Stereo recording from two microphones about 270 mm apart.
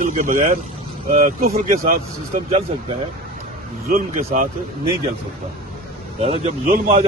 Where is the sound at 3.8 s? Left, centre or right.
Right.